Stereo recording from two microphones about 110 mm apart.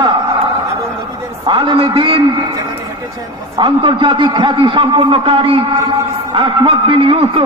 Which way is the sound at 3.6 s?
50° right (ahead or behind).